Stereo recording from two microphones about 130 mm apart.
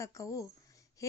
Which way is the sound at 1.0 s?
25° left (ahead or behind).